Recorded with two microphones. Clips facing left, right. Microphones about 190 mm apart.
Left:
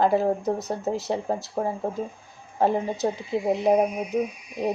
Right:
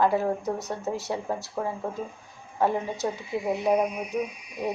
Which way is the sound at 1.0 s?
30° left (ahead or behind).